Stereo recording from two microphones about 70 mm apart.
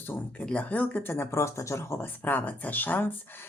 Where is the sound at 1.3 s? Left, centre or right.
Left.